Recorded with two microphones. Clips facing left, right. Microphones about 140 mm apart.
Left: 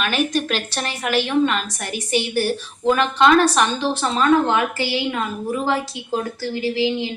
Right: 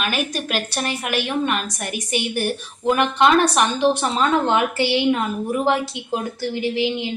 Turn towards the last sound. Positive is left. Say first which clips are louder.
# left 1 dB
turn(degrees=-20)  # may be behind; listen again after turning